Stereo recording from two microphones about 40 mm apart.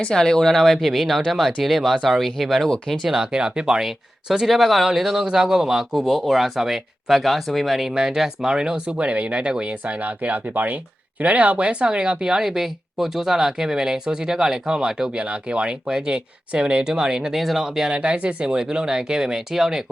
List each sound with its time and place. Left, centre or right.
0.1 s speech: centre
3.3 s speech: right
3.8 s speech: centre
6.1 s speech: centre
7.9 s speech: centre
9.8 s speech: right
11.2 s speech: right; by 15.1 s centre
15.1 s speech: right; by 17.9 s centre
17.9 s speech: right; by 19.8 s centre